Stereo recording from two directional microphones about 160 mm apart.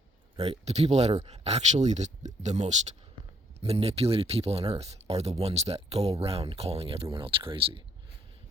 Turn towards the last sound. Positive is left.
turn(degrees=-35)  # may be behind; listen again after turning